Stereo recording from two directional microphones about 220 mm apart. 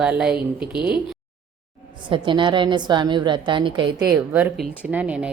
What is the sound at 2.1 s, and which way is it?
A woman's voice, 20° right (ahead or behind).